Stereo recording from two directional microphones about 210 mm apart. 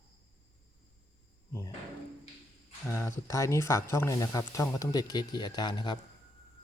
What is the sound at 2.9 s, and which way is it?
Speech, 10° left (ahead or behind).